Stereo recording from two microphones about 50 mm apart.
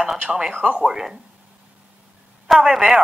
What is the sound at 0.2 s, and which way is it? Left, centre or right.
A woman's voice, centre.